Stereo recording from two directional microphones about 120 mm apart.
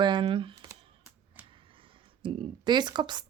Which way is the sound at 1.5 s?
45° right (ahead or behind).